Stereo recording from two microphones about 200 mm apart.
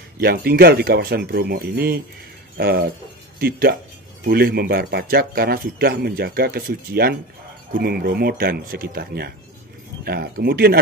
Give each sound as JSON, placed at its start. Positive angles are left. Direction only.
{"t": 0.2, "sound": "speech", "side_deg": -50}